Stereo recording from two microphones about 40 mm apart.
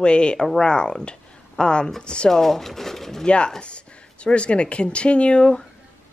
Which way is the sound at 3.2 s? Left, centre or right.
Left.